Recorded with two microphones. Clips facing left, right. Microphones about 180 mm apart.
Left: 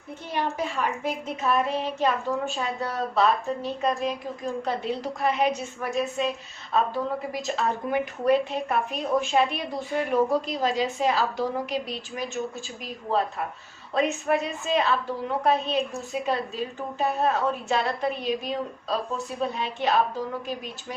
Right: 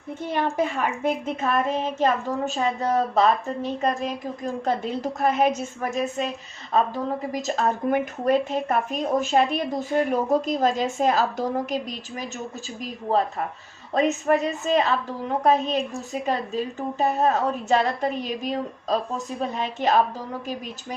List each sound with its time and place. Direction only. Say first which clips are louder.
0.3 s a woman's voice: right 4 dB; 50° right (ahead or behind)
17.0 s a woman's voice: right 3 dB; 40° right (ahead or behind)